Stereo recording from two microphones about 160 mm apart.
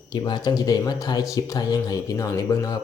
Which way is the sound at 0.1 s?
25° left (ahead or behind).